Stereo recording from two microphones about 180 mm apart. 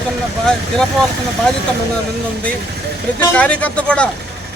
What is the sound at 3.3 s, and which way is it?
Speech, 5° left (ahead or behind).